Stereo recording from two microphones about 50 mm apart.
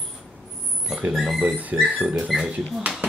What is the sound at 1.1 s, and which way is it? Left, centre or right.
Speech, centre.